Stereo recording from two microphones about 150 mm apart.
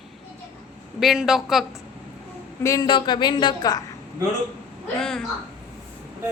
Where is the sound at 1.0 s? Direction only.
5° right (ahead or behind).